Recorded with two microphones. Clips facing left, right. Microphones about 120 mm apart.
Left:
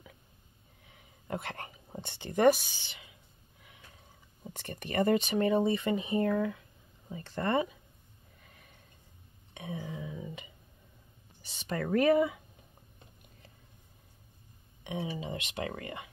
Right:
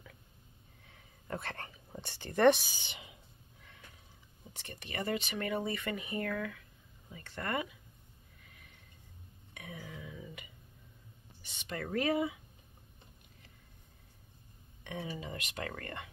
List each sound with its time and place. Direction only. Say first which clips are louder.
0.8 s a sound: left 3 dB; 15° left (ahead or behind)
2.0 s speech: left 2 dB; 20° left (ahead or behind)
2.7 s speech: right 2 dB; 20° right (ahead or behind)
4.6 s speech: left 10 dB; 50° left (ahead or behind); by 7.6 s 30° left (ahead or behind)
9.5 s a sound: left 7 dB; 25° left (ahead or behind)
11.4 s speech: left 6 dB; 35° left (ahead or behind); by 12.4 s 55° left (ahead or behind)
14.8 s speech: left 5 dB; 20° left (ahead or behind)
15.8 s speech: left 2 dB; 10° left (ahead or behind)